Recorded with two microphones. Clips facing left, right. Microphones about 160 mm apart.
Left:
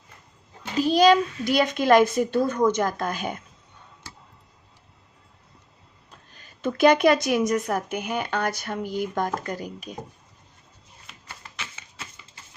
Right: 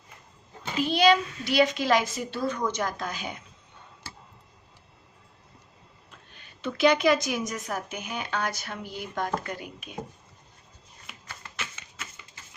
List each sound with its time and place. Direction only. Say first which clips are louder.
0.8 s a woman's voice: left 4 dB; 40° left (ahead or behind)
6.1 s a woman's voice: left 3 dB; 40° left (ahead or behind)